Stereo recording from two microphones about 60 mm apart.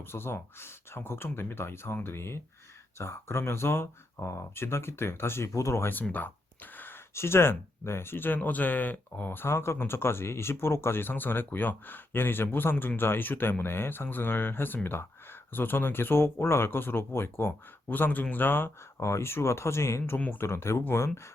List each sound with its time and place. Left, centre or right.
0.0 s speech: left
5.5 s speech: left
5.9 s speech: left
7.1 s speech: left
17.8 s speech: left
19.0 s speech: left